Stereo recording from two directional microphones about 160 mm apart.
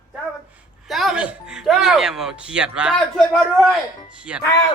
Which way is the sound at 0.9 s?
Centre (ahead or behind).